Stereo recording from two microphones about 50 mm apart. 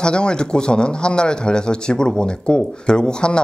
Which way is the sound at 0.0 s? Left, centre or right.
Centre.